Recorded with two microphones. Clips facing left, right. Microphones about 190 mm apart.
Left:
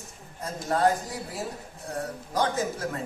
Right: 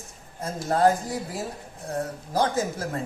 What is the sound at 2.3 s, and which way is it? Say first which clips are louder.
Speech: right 2 dB; 35° right (ahead or behind).